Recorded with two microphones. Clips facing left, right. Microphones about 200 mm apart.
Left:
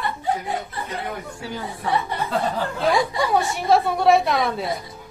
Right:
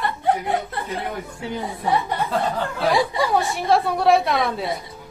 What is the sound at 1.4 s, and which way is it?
Speech, 20° right (ahead or behind).